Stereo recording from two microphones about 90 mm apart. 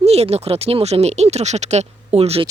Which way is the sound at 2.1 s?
90° right.